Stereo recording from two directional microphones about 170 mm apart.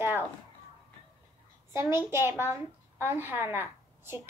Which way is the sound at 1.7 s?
15° right (ahead or behind).